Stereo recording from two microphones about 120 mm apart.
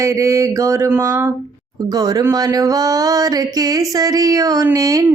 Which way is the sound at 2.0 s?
30° right (ahead or behind).